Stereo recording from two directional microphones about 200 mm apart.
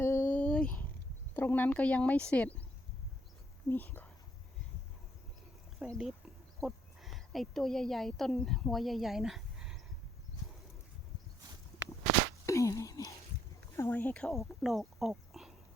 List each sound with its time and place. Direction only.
0.0 s a sound: 10° left (ahead or behind)
1.3 s speech: 10° left (ahead or behind)
3.7 s speech: 10° left (ahead or behind)
5.8 s speech: centre (ahead or behind)
12.5 s a sound: 15° left (ahead or behind)
13.7 s speech: 10° left (ahead or behind)